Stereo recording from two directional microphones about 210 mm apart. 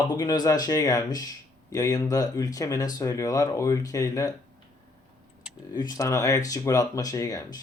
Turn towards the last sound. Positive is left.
turn(degrees=15)  # may be behind; listen again after turning